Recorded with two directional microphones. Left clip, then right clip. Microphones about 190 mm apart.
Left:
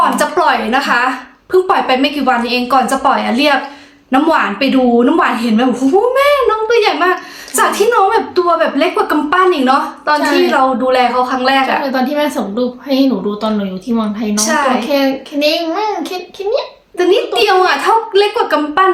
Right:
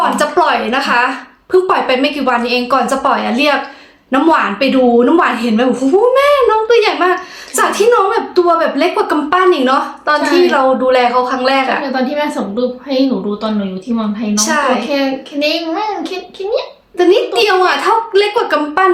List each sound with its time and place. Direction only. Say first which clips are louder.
0.0 s a woman's voice: even; 10° right (ahead or behind)
11.8 s a child's voice: left 1 dB; 20° left (ahead or behind)
14.3 s a woman's voice: even; 10° right (ahead or behind)
14.8 s a child's voice: left 2 dB; 20° left (ahead or behind)
17.0 s a woman's voice: right 1 dB; 10° right (ahead or behind)